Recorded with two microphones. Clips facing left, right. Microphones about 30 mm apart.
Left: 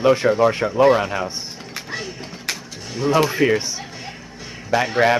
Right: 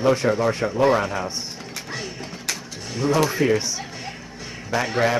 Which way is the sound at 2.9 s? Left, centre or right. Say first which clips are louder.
Left 2 dB; centre.